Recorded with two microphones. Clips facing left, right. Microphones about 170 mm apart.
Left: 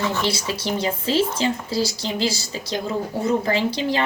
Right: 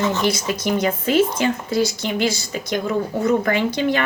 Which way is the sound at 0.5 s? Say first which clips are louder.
Right 4 dB; 30° left (ahead or behind).